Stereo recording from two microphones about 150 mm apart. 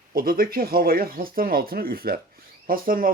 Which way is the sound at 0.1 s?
75° right (ahead or behind).